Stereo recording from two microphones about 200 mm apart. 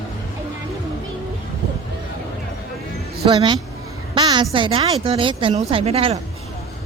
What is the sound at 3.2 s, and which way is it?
Speech, 25° right (ahead or behind).